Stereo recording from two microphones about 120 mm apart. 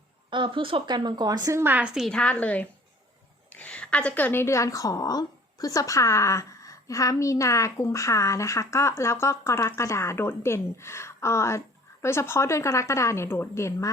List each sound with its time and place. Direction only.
0.3 s a woman's voice: 45° right (ahead or behind); by 13.9 s 25° left (ahead or behind)